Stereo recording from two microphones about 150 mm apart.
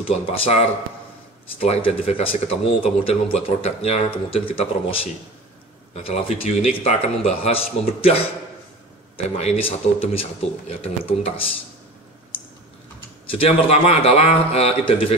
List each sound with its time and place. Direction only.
0.1 s a man's voice: 45° left (ahead or behind)
1.7 s speech: 40° left (ahead or behind)
6.0 s speech: 40° left (ahead or behind)
13.3 s a man's voice: 40° left (ahead or behind)